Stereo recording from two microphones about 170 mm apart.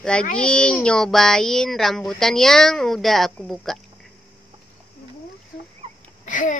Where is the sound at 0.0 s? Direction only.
5° left (ahead or behind).